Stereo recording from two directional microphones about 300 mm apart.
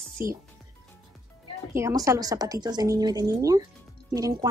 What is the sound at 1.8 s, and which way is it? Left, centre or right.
Speech, centre.